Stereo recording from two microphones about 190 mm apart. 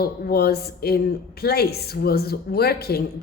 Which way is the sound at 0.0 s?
55° left (ahead or behind).